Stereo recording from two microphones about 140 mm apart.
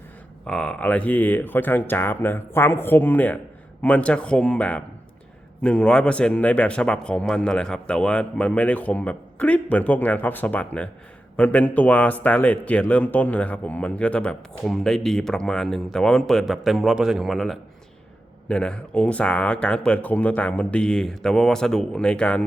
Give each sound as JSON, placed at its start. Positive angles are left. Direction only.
{"t": 0.4, "sound": "a man's voice", "side_deg": 5}